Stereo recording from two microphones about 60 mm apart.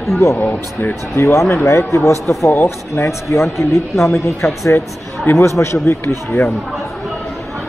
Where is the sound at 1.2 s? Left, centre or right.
Left.